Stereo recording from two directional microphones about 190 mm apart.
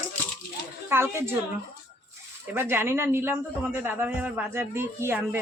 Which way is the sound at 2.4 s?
10° right (ahead or behind).